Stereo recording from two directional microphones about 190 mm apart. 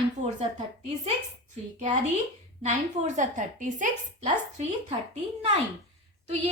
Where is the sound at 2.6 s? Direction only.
40° right (ahead or behind).